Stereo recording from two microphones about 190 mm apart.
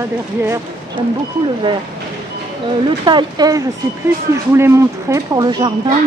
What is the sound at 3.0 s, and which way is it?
A woman's voice, 25° right (ahead or behind).